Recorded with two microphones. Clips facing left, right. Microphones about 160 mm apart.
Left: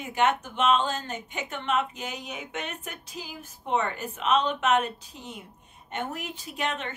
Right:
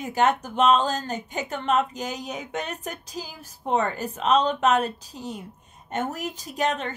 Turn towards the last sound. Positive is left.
turn(degrees=-40)  # may be behind; listen again after turning